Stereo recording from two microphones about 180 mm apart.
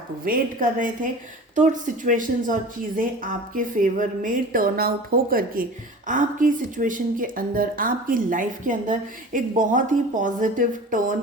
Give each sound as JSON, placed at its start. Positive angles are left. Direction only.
{"t": 0.3, "sound": "a woman's voice", "side_deg": -50}